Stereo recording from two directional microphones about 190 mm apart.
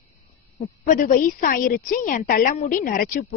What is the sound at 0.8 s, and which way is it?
A woman's voice, 45° left (ahead or behind).